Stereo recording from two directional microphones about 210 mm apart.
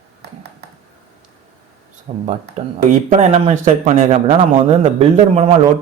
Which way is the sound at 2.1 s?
25° right (ahead or behind).